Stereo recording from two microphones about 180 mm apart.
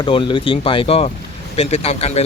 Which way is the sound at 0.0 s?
25° left (ahead or behind).